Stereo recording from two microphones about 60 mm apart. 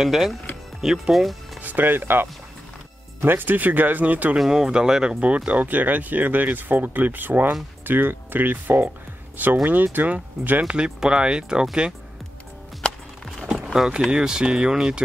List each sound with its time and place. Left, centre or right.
0.0 s speech: centre
1.6 s speech: right
4.4 s speech: centre; by 10.6 s right
10.7 s speech: centre
12.8 s music: centre
13.8 s speech: centre